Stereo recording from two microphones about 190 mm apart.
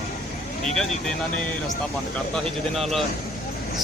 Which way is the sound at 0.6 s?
5° left (ahead or behind).